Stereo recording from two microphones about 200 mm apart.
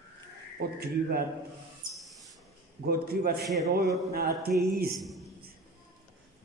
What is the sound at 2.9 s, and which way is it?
Speech, 50° right (ahead or behind).